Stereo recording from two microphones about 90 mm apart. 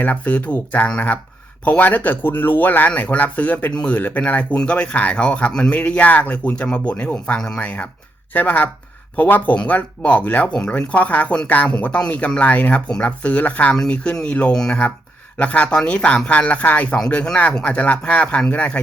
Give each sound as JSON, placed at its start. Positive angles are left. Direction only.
{"t": 0.0, "sound": "speech", "side_deg": 15}